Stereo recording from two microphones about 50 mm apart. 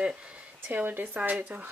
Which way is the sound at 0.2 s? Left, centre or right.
Right.